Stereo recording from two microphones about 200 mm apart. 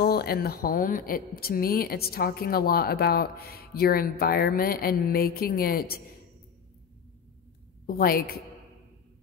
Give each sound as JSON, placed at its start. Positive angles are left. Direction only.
{"t": 0.0, "sound": "speech", "side_deg": 50}
{"t": 7.8, "sound": "a woman's voice", "side_deg": 50}